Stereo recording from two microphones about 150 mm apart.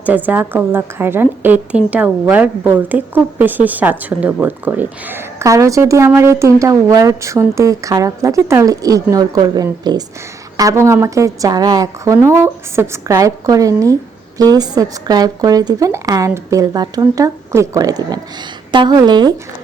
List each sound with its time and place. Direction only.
0.0 s a woman's voice: 10° right (ahead or behind); by 19.3 s 30° right (ahead or behind)